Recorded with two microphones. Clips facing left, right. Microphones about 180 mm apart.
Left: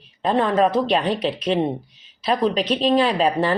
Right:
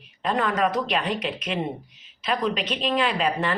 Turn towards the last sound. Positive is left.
turn(degrees=35)  # may be behind; listen again after turning